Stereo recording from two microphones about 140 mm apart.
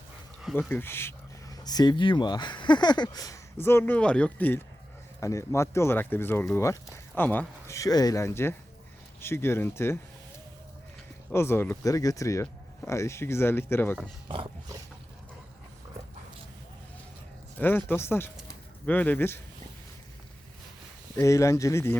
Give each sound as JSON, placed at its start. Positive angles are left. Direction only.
{"t": 0.7, "sound": "speech", "side_deg": 15}
{"t": 7.8, "sound": "speech", "side_deg": 25}
{"t": 11.3, "sound": "speech", "side_deg": 15}
{"t": 17.6, "sound": "speech", "side_deg": 15}
{"t": 21.2, "sound": "speech", "side_deg": 20}